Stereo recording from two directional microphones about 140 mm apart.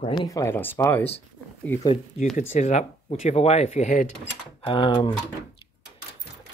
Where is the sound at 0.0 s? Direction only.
30° left (ahead or behind); by 1.0 s 15° left (ahead or behind).